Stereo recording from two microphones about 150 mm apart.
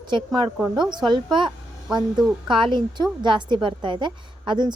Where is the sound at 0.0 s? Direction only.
30° right (ahead or behind).